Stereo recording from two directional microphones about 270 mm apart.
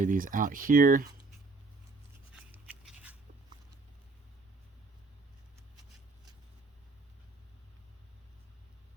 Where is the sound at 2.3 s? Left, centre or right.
Centre.